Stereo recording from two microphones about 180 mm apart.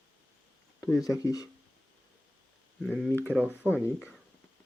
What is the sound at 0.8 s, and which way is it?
Speech, 15° left (ahead or behind).